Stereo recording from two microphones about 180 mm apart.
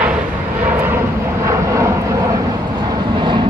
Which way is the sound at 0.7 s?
10° right (ahead or behind).